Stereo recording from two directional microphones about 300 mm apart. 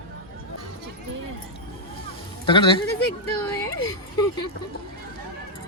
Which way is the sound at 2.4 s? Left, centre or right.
Centre.